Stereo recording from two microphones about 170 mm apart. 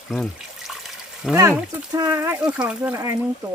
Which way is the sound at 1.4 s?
20° right (ahead or behind).